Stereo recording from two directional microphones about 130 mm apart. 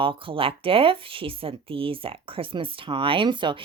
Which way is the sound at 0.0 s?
40° right (ahead or behind).